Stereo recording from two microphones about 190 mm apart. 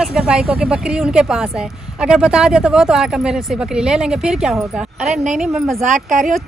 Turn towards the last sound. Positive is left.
turn(degrees=-40)  # may be behind; listen again after turning